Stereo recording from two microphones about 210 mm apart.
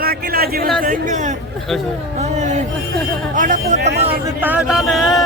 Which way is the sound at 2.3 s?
35° right (ahead or behind).